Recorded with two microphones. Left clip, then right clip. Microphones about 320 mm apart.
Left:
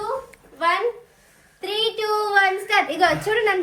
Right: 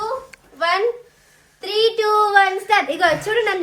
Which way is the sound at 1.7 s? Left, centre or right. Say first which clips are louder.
Right 6 dB; right.